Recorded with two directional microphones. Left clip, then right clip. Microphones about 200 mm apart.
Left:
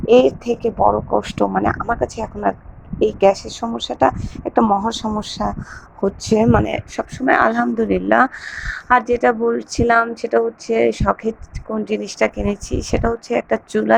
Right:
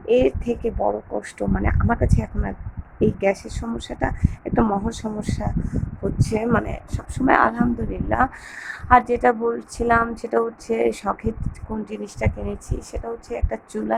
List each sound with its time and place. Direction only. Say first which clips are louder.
0.0 s speech: left 6 dB; 20° left (ahead or behind)
8.4 s speech: left 1 dB; 10° left (ahead or behind)
11.9 s speech: left 11 dB; 25° left (ahead or behind)